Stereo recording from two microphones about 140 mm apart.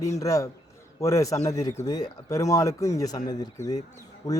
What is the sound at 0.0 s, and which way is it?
Speech, 25° left (ahead or behind).